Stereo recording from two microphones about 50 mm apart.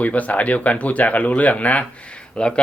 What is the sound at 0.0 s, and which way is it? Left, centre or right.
Speech, left.